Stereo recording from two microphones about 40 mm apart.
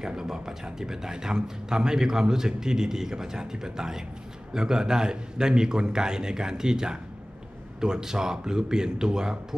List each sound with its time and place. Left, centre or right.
0.0 s speech: centre